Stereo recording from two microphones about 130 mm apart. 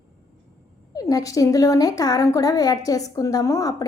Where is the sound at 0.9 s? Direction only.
25° left (ahead or behind).